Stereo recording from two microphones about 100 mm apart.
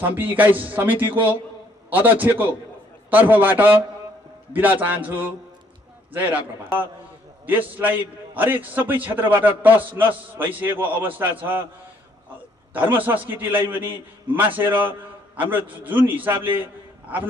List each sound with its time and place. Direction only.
0.0 s a man's voice: 15° right (ahead or behind)
7.7 s a man's voice: 20° right (ahead or behind)
12.7 s a man's voice: 20° right (ahead or behind)